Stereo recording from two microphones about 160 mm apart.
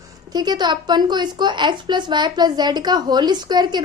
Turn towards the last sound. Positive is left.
turn(degrees=-25)  # may be behind; listen again after turning